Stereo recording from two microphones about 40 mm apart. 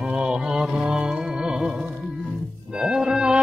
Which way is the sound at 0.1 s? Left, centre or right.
Centre.